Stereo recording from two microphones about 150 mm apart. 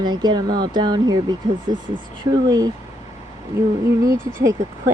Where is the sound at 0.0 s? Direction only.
30° right (ahead or behind).